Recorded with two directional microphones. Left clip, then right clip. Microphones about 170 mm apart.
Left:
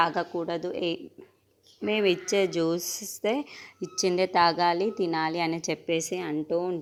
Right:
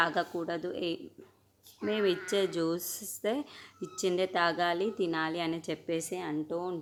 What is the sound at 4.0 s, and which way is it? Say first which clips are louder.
A woman's voice: left 6 dB; 30° left (ahead or behind).